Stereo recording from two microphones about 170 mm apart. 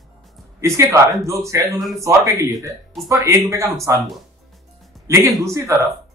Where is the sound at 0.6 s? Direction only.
15° right (ahead or behind).